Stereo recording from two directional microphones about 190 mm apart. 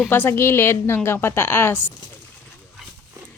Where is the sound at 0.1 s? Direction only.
10° left (ahead or behind).